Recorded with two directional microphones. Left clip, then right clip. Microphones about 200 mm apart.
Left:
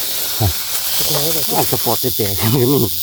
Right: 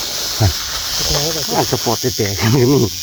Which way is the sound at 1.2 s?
35° left (ahead or behind).